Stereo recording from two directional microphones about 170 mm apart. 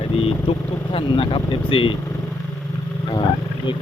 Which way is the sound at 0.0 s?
35° left (ahead or behind).